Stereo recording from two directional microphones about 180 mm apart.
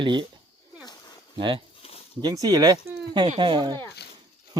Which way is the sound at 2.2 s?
20° right (ahead or behind).